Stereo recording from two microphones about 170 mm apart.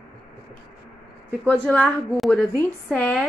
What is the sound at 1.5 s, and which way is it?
A woman's voice, 5° left (ahead or behind).